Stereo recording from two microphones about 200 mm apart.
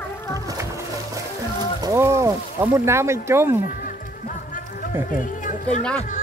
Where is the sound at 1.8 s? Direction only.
15° right (ahead or behind).